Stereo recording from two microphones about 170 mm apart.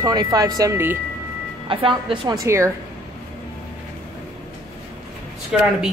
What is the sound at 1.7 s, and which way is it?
Speech, 30° right (ahead or behind).